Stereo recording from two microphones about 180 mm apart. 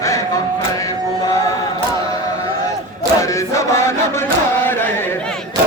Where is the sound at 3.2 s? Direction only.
15° left (ahead or behind).